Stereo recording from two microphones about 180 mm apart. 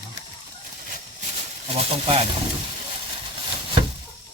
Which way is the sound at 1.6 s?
35° right (ahead or behind).